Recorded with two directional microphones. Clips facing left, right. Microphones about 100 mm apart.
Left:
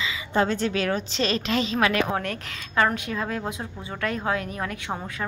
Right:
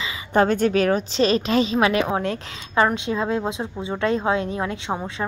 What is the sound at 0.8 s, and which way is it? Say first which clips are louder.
A woman's voice: right 6 dB; 35° right (ahead or behind).